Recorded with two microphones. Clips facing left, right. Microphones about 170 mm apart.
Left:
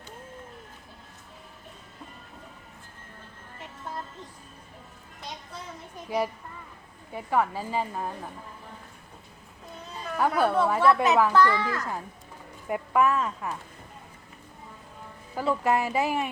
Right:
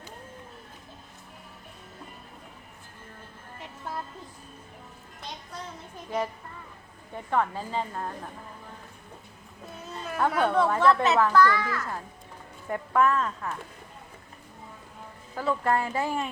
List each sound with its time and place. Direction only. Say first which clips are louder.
6.1 s a woman's voice: left 2 dB; 10° left (ahead or behind)
9.9 s speech: left 1 dB; centre (ahead or behind)
11.3 s a child's voice: even; 25° left (ahead or behind)
12.6 s a woman's voice: even; 10° left (ahead or behind)
15.4 s a woman's voice: left 1 dB; 10° left (ahead or behind)